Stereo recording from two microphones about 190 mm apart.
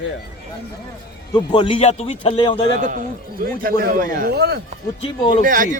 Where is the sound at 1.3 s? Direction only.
25° left (ahead or behind).